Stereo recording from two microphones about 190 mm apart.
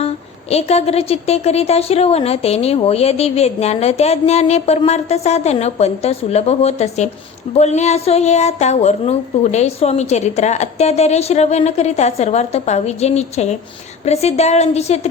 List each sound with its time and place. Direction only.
0.5 s a woman's voice: 35° left (ahead or behind)